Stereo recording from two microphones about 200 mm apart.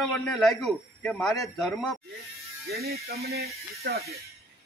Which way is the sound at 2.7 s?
50° right (ahead or behind).